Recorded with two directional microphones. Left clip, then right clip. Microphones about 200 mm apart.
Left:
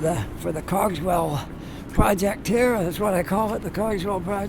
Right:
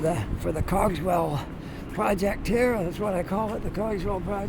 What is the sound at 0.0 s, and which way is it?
Speech, 10° left (ahead or behind).